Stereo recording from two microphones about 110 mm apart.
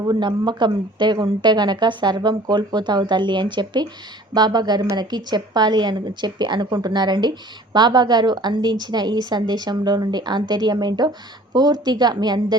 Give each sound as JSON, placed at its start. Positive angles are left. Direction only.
{"t": 0.0, "sound": "speech", "side_deg": -40}